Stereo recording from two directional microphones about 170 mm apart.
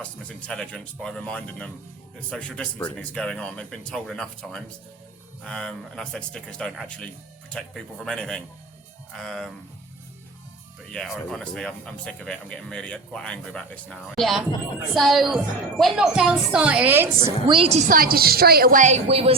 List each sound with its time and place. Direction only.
0.0 s speech: 5° left (ahead or behind)
10.9 s speech: 5° left (ahead or behind)
17.2 s a woman's voice: 25° right (ahead or behind)
17.7 s a woman's voice: 55° right (ahead or behind); by 19.4 s 35° right (ahead or behind)